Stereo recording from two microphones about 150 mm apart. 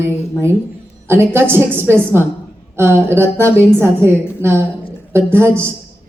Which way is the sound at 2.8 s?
15° right (ahead or behind).